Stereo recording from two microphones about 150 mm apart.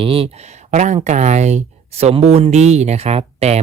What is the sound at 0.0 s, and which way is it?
Speech, 40° right (ahead or behind).